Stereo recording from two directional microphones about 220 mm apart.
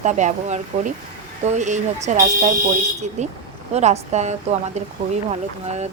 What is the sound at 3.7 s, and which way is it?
Speech, 30° right (ahead or behind).